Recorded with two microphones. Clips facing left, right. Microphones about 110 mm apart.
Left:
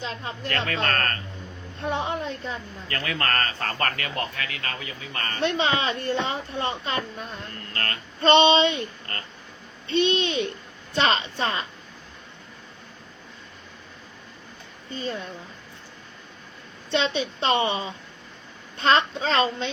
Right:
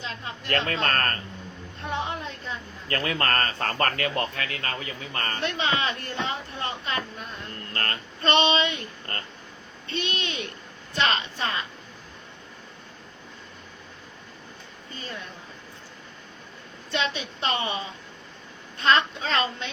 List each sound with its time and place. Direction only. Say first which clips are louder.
0.4 s a man's voice: right 1 dB; 35° right (ahead or behind)
1.8 s a woman's voice: left 3 dB; 35° left (ahead or behind)
2.9 s a man's voice: right 1 dB; 30° right (ahead or behind)
5.4 s speech: left 4 dB; 25° left (ahead or behind)
7.7 s female singing: right 1 dB; 30° right (ahead or behind)
8.2 s speech: left 5 dB; 30° left (ahead or behind)
9.9 s speech: left 9 dB; 25° left (ahead or behind)
14.9 s speech: left 8 dB; 30° left (ahead or behind)
16.9 s speech: left 4 dB; 30° left (ahead or behind)
18.8 s speech: left 1 dB; 30° left (ahead or behind)